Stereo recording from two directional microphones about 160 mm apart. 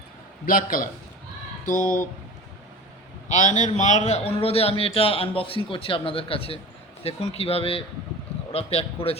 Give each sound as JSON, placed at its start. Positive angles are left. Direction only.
{"t": 0.4, "sound": "a man's voice", "side_deg": 60}
{"t": 3.2, "sound": "a man's voice", "side_deg": 50}